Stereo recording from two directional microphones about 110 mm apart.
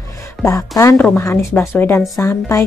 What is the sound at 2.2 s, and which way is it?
Speech, 30° left (ahead or behind).